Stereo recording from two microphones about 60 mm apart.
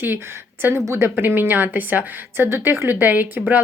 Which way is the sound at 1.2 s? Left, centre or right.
Right.